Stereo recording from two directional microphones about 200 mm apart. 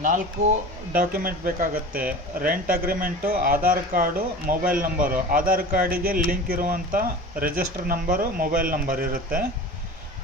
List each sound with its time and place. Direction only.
0.9 s speech: 45° right (ahead or behind)